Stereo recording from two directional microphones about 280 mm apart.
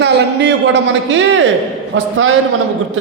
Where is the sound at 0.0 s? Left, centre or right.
Right.